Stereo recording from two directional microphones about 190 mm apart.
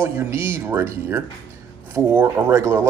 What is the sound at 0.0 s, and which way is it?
Speech, 15° right (ahead or behind).